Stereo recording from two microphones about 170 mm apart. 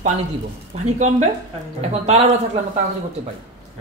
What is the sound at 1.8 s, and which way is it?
Speech, 40° right (ahead or behind).